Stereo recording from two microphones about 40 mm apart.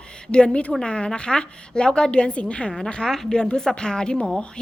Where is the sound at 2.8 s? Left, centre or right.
Centre.